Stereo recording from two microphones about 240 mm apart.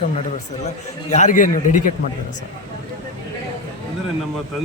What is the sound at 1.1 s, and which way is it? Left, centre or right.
Speech, left.